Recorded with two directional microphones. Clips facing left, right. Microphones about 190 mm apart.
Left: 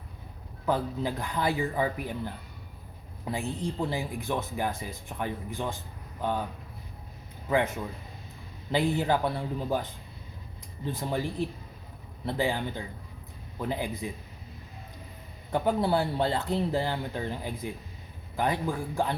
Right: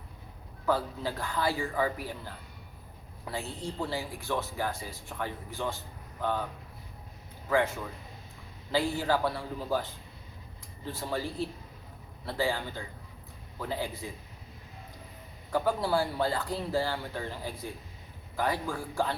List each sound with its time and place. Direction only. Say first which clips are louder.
0.6 s speech: left 1 dB; 20° left (ahead or behind)
7.5 s speech: left 1 dB; 20° left (ahead or behind)
15.5 s speech: left 2 dB; 20° left (ahead or behind)